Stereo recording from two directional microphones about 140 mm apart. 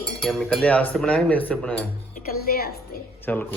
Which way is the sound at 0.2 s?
Centre (ahead or behind).